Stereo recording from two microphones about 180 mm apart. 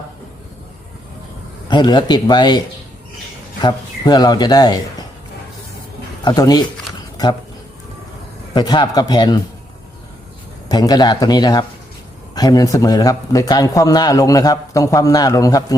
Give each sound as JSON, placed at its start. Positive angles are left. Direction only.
{"t": 1.6, "sound": "a man's voice", "side_deg": 25}
{"t": 3.6, "sound": "a man's voice", "side_deg": 20}
{"t": 6.2, "sound": "a man's voice", "side_deg": 20}
{"t": 8.5, "sound": "a man's voice", "side_deg": 25}
{"t": 10.7, "sound": "a man's voice", "side_deg": 20}